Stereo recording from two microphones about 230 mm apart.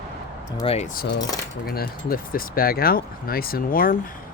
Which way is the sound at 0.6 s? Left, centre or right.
Left.